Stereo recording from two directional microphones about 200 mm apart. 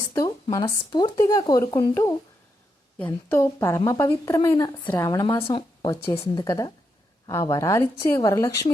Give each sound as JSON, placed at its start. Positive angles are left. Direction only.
{"t": 0.5, "sound": "a woman's voice", "side_deg": 20}